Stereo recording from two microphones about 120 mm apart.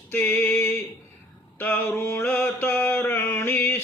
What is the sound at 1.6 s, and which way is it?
Mantra, 20° left (ahead or behind).